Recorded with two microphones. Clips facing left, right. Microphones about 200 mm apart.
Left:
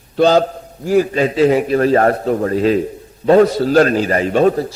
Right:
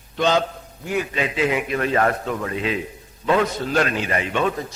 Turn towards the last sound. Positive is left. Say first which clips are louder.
# left 9 dB
turn(degrees=40)  # may be behind; listen again after turning